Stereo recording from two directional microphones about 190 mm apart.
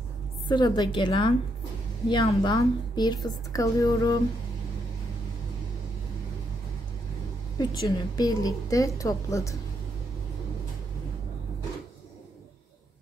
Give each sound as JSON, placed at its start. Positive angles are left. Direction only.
{"t": 0.5, "sound": "a woman's voice", "side_deg": 25}
{"t": 7.5, "sound": "a woman's voice", "side_deg": 20}